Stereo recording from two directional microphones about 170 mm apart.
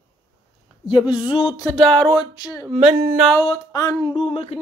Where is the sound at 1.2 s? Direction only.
30° left (ahead or behind).